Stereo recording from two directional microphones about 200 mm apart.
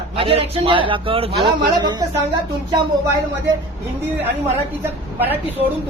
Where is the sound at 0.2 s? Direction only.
30° right (ahead or behind).